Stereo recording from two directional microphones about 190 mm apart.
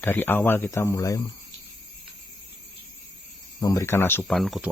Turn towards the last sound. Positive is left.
turn(degrees=0)  # may be behind; listen again after turning